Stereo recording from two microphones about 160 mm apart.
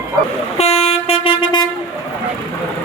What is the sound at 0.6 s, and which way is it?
Vehicle, 40° left (ahead or behind).